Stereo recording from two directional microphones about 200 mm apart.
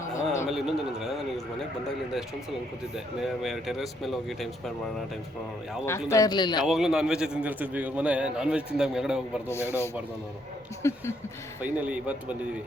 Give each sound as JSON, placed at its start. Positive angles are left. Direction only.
{"t": 0.4, "sound": "a sound", "side_deg": 0}
{"t": 2.9, "sound": "a man's voice", "side_deg": 0}
{"t": 6.1, "sound": "speech", "side_deg": 20}
{"t": 6.7, "sound": "a man's voice", "side_deg": 0}
{"t": 9.5, "sound": "speech", "side_deg": 10}
{"t": 11.6, "sound": "speech", "side_deg": -5}